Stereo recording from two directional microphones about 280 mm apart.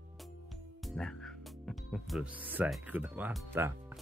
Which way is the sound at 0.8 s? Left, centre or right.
Centre.